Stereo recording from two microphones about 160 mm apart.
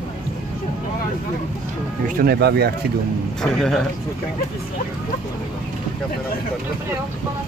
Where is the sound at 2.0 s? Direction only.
70° right (ahead or behind); by 2.7 s 85° right.